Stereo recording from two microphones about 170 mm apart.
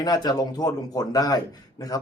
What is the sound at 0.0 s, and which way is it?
Speech, 25° left (ahead or behind).